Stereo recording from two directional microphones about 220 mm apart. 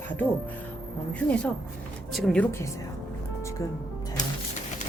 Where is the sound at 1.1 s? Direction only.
5° left (ahead or behind).